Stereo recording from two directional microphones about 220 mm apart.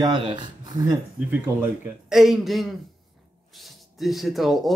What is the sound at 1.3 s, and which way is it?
Speech, 5° right (ahead or behind).